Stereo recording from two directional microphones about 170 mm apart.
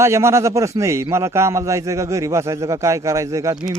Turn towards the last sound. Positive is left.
turn(degrees=-20)  # may be behind; listen again after turning